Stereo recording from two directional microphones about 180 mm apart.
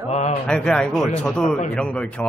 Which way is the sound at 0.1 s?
40° left (ahead or behind).